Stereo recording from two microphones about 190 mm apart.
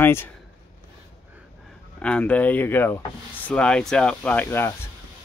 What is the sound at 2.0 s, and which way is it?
Speech, 5° left (ahead or behind).